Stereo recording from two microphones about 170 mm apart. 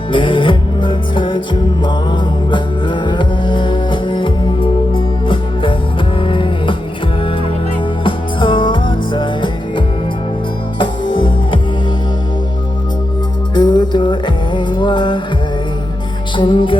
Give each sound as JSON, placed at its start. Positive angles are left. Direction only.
{"t": 0.1, "sound": "music", "side_deg": 30}
{"t": 2.5, "sound": "music", "side_deg": 25}
{"t": 8.0, "sound": "music", "side_deg": 30}
{"t": 13.5, "sound": "music", "side_deg": 25}
{"t": 16.4, "sound": "music", "side_deg": 30}